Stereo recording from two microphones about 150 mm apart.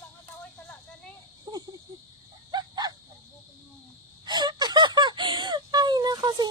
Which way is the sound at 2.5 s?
25° right (ahead or behind).